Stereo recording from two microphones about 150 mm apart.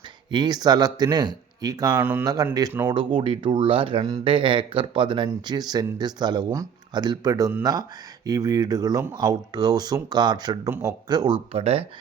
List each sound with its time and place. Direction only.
0.3 s speech: 30° right (ahead or behind)
10.7 s speech: 15° right (ahead or behind)
11.1 s speech: 25° right (ahead or behind)
11.5 s speech: 40° right (ahead or behind)